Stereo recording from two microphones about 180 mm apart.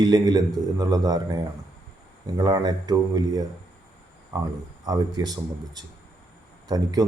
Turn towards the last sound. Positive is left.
turn(degrees=-20)  # may be behind; listen again after turning